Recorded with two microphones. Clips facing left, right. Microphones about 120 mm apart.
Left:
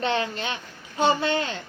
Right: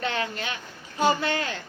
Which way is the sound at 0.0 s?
25° left (ahead or behind).